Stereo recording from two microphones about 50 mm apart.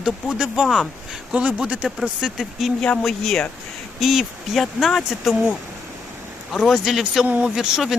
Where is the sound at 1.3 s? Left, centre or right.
Right; by 5.3 s centre.